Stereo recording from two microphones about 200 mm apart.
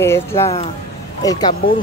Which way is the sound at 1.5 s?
45° left (ahead or behind).